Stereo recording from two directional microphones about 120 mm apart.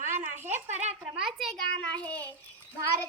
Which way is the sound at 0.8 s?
65° right (ahead or behind).